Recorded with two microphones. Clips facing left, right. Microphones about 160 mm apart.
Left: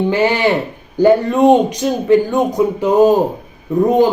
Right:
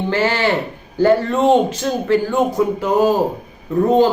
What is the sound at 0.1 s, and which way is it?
A man's voice, 15° left (ahead or behind).